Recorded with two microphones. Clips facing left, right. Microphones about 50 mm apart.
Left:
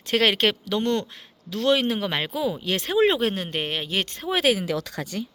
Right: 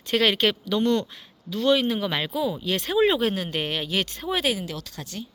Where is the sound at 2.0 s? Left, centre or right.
Left.